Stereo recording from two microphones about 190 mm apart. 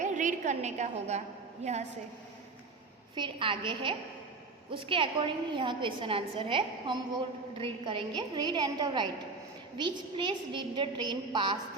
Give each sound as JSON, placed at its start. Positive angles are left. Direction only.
{"t": 0.0, "sound": "a woman's voice", "side_deg": -40}
{"t": 3.2, "sound": "a woman's voice", "side_deg": -25}